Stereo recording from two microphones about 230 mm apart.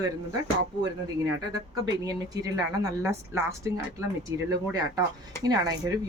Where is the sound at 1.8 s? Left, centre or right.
Centre.